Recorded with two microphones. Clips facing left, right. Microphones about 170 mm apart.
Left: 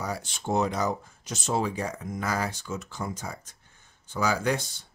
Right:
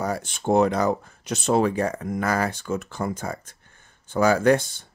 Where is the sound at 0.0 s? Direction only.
55° right (ahead or behind).